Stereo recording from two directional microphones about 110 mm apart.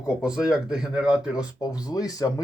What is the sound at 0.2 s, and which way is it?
Speech, 5° right (ahead or behind).